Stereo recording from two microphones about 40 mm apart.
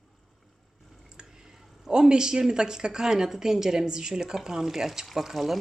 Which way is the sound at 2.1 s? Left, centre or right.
Centre.